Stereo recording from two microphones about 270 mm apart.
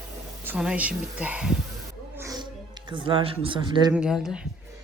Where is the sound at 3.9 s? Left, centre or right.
Centre.